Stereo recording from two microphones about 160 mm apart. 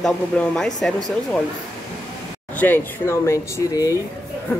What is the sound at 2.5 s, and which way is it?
Speech, 10° left (ahead or behind).